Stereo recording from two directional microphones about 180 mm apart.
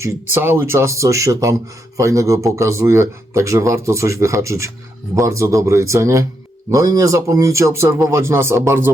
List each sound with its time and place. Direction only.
0.0 s speech: 10° right (ahead or behind)